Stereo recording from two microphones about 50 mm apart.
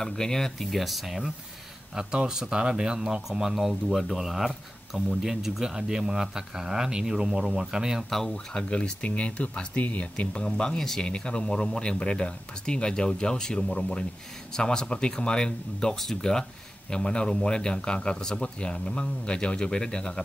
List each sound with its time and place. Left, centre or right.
0.0 s speech: centre
0.7 s speech: centre
2.0 s speech: centre
8.1 s speech: centre